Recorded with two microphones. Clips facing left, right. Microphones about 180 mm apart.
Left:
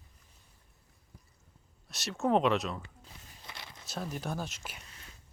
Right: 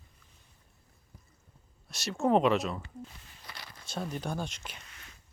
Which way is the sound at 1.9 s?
Centre (ahead or behind).